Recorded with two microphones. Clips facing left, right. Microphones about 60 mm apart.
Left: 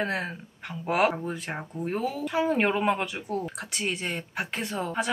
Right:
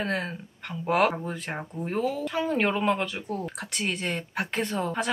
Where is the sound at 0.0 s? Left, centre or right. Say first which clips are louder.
Even; centre.